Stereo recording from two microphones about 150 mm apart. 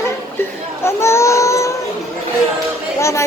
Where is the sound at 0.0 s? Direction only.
15° left (ahead or behind).